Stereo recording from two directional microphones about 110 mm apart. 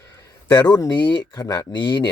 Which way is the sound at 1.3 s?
35° left (ahead or behind).